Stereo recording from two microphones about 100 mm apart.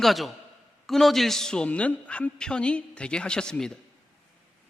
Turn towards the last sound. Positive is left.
turn(degrees=5)  # may be behind; listen again after turning